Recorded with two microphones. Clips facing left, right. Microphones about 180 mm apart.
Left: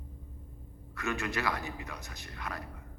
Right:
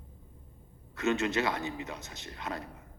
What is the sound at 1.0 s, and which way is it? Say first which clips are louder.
Speech: right 6 dB; 20° right (ahead or behind).